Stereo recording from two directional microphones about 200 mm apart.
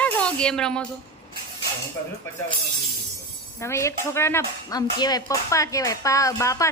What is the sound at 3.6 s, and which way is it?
Speech, 15° left (ahead or behind).